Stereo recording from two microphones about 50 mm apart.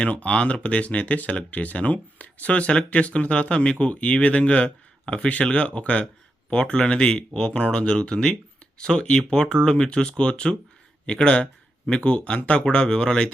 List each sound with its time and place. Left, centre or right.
0.0 s speech: left